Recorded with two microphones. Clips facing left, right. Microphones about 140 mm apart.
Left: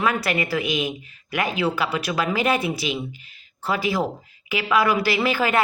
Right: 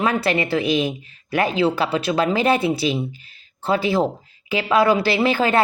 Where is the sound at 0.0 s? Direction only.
30° right (ahead or behind).